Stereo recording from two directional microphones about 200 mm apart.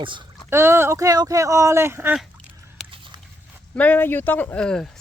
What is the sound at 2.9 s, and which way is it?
Dog, 25° right (ahead or behind).